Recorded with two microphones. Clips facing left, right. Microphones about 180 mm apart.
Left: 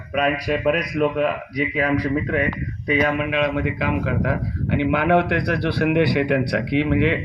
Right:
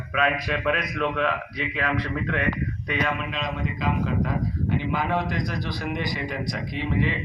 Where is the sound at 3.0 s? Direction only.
55° left (ahead or behind).